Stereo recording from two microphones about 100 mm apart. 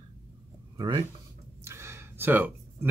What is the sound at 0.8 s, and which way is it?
Speech, 50° right (ahead or behind).